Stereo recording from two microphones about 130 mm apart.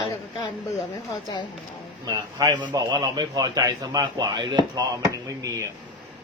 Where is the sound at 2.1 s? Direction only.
30° right (ahead or behind).